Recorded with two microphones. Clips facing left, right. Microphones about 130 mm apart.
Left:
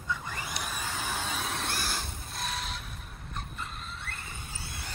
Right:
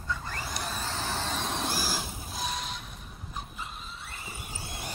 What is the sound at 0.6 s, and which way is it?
Vehicle, 10° left (ahead or behind).